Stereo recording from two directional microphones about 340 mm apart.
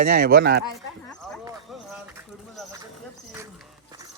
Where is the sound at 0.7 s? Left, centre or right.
Centre.